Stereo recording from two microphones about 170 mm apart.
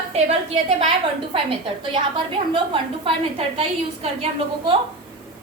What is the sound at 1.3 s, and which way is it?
A woman's voice, 30° right (ahead or behind).